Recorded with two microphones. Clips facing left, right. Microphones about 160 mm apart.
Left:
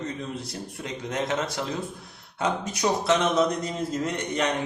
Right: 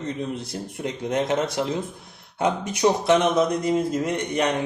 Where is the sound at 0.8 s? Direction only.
20° right (ahead or behind).